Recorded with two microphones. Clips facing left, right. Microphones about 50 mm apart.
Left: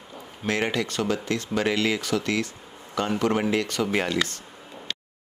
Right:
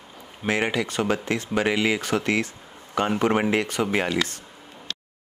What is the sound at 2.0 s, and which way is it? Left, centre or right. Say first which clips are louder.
Speech: right 2 dB; right.